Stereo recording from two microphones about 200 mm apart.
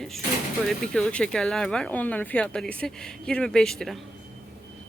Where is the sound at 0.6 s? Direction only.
Centre (ahead or behind).